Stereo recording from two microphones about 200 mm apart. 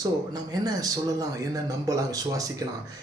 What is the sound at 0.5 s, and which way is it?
Speech, 20° right (ahead or behind).